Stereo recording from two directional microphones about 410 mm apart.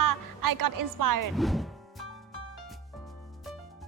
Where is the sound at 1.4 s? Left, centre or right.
Centre.